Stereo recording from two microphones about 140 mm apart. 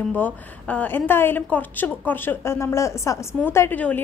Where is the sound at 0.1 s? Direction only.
10° left (ahead or behind).